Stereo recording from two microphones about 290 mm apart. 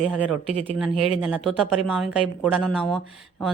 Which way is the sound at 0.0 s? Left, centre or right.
Centre.